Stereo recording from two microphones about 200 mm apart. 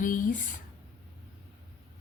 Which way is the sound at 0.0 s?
40° left (ahead or behind).